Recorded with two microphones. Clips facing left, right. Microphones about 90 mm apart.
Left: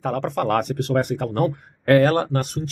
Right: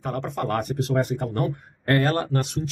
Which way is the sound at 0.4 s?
75° left (ahead or behind).